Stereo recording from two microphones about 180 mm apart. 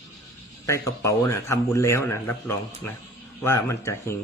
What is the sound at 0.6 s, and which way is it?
A man's voice, 20° left (ahead or behind).